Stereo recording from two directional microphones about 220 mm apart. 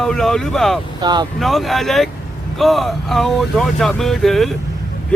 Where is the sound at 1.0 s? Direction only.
20° right (ahead or behind).